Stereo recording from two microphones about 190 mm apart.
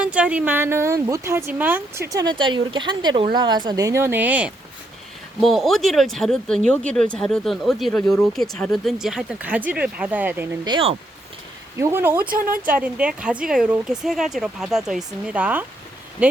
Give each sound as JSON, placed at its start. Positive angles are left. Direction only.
{"t": 0.0, "sound": "speech", "side_deg": -5}
{"t": 10.7, "sound": "speech", "side_deg": -25}
{"t": 11.8, "sound": "speech", "side_deg": -10}
{"t": 12.2, "sound": "speech", "side_deg": -45}
{"t": 12.5, "sound": "speech", "side_deg": -10}